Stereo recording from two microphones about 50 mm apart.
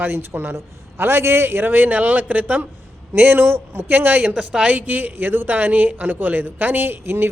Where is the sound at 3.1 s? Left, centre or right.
Right.